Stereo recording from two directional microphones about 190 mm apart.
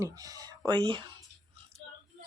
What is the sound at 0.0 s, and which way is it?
Speech, 20° right (ahead or behind).